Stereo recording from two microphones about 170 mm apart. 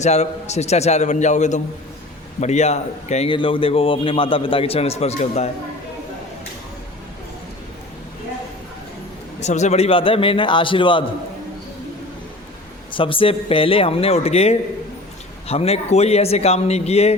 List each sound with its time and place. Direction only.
0.0 s a man's voice: 40° left (ahead or behind)
9.4 s a man's voice: 45° left (ahead or behind)
12.9 s a man's voice: 30° left (ahead or behind)